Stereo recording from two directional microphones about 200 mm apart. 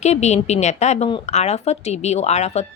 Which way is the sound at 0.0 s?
35° left (ahead or behind).